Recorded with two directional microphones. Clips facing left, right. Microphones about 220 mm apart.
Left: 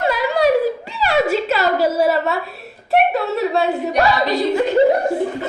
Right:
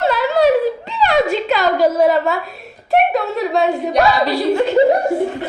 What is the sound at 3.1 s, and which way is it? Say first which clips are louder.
Speech: even; centre (ahead or behind).